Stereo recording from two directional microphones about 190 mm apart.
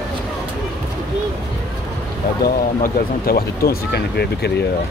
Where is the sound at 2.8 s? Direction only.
50° left (ahead or behind).